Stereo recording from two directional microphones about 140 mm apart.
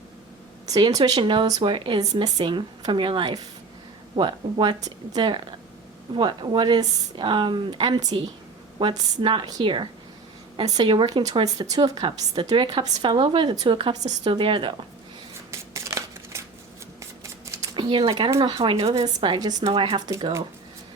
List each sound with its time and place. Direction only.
0.9 s speech: 25° right (ahead or behind)
15.7 s a sound: 20° right (ahead or behind)
17.0 s scissors: 20° right (ahead or behind)
17.7 s a woman's voice: 35° right (ahead or behind)
19.6 s speech: 40° right (ahead or behind); by 20.4 s 25° right (ahead or behind)